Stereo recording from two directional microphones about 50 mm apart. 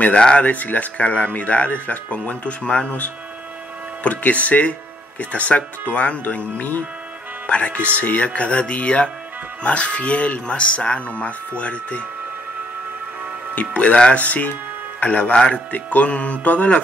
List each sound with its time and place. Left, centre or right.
0.0 s speech: centre
0.4 s speech: left
13.6 s speech: left